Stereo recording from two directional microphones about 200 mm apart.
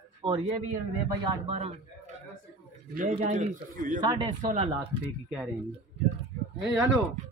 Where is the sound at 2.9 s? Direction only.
45° right (ahead or behind).